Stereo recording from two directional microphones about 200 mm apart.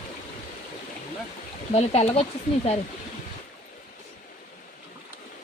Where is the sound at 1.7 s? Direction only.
30° left (ahead or behind).